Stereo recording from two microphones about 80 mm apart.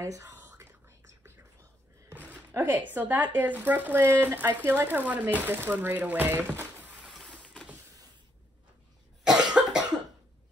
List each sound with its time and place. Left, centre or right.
0.6 s whispering: right
2.1 s a sound: right
2.5 s speech: right
7.1 s vehicle: centre
9.2 s cough: centre